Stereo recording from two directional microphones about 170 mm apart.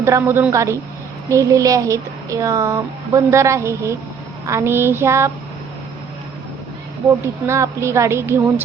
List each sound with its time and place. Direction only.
0.0 s a woman's voice: 15° right (ahead or behind)
7.4 s a woman's voice: 15° right (ahead or behind)